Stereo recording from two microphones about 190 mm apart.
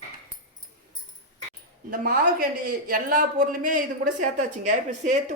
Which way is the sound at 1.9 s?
50° right (ahead or behind).